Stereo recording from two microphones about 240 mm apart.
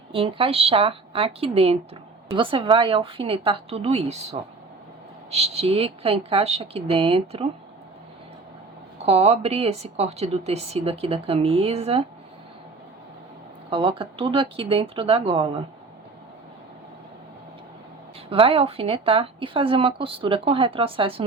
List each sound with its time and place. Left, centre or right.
0.1 s a woman's voice: right
9.0 s a woman's voice: right
13.7 s a woman's voice: right
18.3 s a woman's voice: right